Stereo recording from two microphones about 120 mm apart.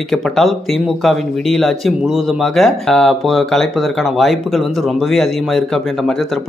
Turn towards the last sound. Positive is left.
turn(degrees=5)  # may be behind; listen again after turning